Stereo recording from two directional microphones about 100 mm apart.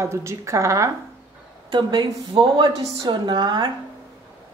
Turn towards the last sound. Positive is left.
turn(degrees=-50)  # may be behind; listen again after turning